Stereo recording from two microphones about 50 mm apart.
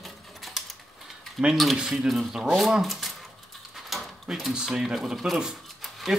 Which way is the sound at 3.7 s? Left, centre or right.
Centre.